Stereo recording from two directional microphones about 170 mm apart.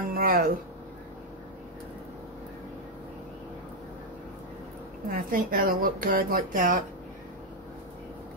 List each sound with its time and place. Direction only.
0.0 s music: 55° right (ahead or behind)
5.1 s speech: 55° right (ahead or behind)